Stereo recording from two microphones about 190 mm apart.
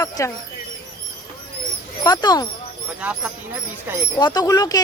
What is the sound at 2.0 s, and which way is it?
Speech, 20° left (ahead or behind).